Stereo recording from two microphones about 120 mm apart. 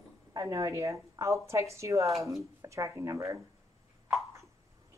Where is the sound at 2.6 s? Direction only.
25° right (ahead or behind).